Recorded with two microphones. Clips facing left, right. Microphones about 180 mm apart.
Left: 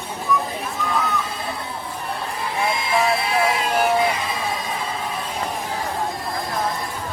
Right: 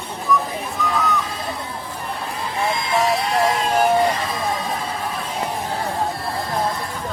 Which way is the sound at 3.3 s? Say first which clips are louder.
Right 2 dB; 10° left (ahead or behind).